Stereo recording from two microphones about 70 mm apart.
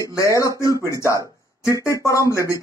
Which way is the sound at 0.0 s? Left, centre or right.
Left.